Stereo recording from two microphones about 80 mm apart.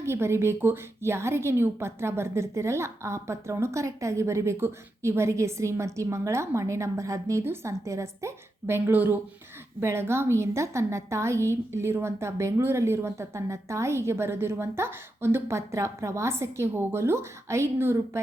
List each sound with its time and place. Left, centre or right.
0.0 s a woman's voice: right